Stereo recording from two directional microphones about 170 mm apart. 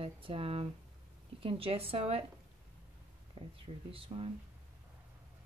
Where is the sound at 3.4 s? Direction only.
30° right (ahead or behind).